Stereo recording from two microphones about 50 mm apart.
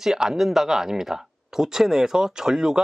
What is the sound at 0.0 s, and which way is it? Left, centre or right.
Speech, centre.